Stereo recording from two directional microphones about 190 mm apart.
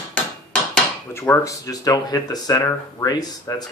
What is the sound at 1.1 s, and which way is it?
Speech, 10° left (ahead or behind).